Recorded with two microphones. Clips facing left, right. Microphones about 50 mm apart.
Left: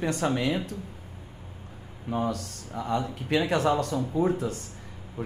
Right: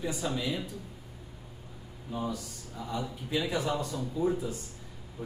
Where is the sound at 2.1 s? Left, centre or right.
Left.